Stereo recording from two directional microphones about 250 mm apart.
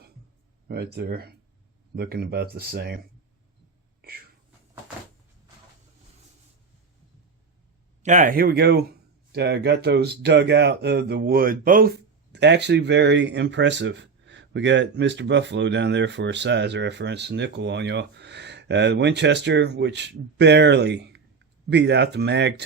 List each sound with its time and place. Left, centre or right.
0.7 s speech: right
8.0 s speech: right